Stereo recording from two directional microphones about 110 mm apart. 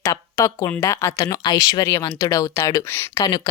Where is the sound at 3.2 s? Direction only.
40° left (ahead or behind).